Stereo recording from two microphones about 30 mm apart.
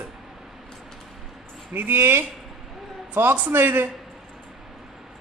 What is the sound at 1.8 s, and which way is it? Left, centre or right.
A man's voice, right.